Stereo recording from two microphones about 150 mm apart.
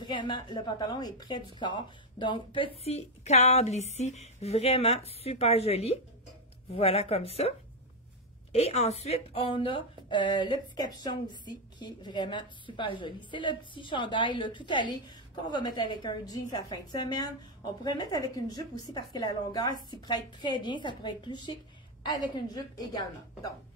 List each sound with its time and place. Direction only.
0.0 s a woman's voice: 30° left (ahead or behind)